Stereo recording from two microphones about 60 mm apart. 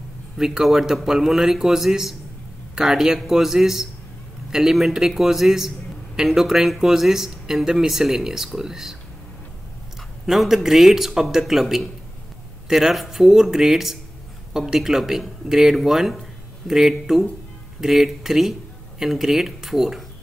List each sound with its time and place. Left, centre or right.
0.4 s a man's voice: centre
10.2 s a man's voice: centre